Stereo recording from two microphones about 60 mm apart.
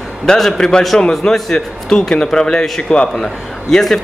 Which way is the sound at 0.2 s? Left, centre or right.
Centre.